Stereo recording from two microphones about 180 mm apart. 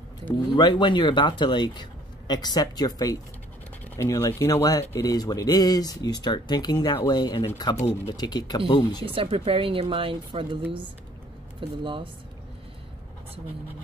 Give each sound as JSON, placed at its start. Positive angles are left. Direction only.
{"t": 0.6, "sound": "speech", "side_deg": 25}
{"t": 9.0, "sound": "speech", "side_deg": -30}
{"t": 11.8, "sound": "speech", "side_deg": -30}